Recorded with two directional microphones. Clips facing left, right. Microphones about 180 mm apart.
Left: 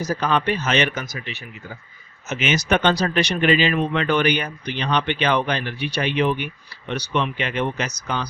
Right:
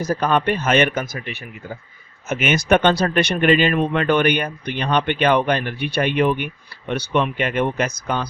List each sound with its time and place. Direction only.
0.0 s speech: 55° right (ahead or behind)